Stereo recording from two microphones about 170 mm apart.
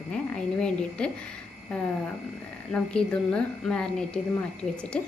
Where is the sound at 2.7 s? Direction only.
5° left (ahead or behind).